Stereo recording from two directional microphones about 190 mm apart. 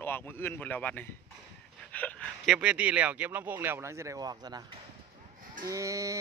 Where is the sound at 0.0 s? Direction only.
10° left (ahead or behind).